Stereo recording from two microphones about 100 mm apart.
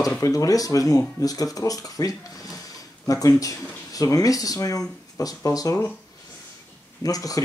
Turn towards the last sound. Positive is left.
turn(degrees=35)  # may be behind; listen again after turning